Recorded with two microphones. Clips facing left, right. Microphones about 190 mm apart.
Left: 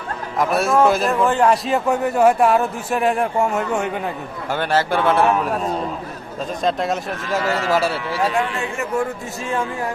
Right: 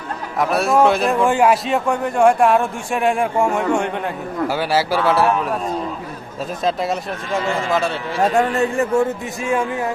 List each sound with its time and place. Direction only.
0.3 s a man's voice: centre (ahead or behind)
1.2 s a man's voice: 10° right (ahead or behind)
4.4 s a man's voice: 10° right (ahead or behind)
6.7 s a man's voice: centre (ahead or behind)
8.2 s a man's voice: 45° right (ahead or behind)
9.4 s speech: 15° right (ahead or behind)